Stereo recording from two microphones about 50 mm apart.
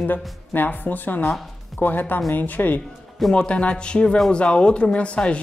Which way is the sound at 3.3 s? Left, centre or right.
Left.